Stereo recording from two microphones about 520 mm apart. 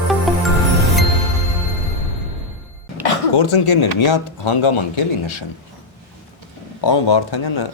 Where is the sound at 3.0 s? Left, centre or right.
Left.